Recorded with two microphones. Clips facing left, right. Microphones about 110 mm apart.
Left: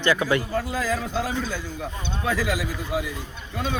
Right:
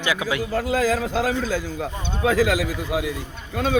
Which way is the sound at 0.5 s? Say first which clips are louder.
Right 5 dB; 90° right.